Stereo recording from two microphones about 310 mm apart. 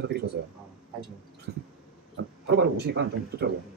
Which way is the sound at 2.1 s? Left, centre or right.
Right.